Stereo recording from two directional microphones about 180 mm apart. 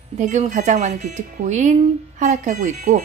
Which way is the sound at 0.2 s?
40° right (ahead or behind).